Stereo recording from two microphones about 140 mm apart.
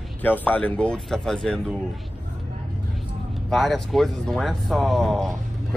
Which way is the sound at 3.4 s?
5° left (ahead or behind).